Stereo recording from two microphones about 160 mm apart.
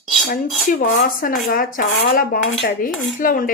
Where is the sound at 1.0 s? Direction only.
60° left (ahead or behind).